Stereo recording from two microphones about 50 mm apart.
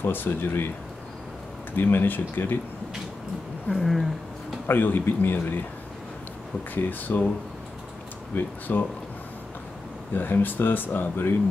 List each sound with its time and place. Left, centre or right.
0.0 s speech: left
1.8 s speech: left
3.6 s a sound: centre
4.6 s speech: left
6.7 s speech: left
8.4 s speech: left
10.1 s speech: left